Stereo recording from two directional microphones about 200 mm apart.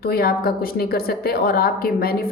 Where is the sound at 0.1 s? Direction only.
50° left (ahead or behind).